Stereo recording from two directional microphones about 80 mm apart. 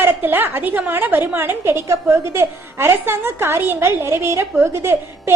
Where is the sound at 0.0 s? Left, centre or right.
Right.